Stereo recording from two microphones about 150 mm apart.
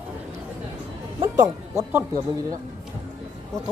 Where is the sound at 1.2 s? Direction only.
20° right (ahead or behind).